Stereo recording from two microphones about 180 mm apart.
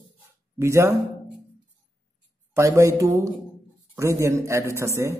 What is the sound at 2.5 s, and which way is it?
A man's voice, 15° right (ahead or behind).